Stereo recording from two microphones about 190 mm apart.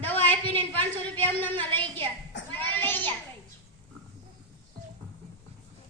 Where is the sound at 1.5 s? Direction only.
25° right (ahead or behind).